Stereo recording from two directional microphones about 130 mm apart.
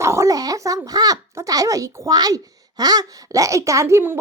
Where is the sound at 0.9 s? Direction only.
30° right (ahead or behind).